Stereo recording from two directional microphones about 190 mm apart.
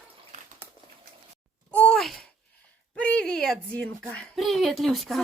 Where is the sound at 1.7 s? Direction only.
5° left (ahead or behind).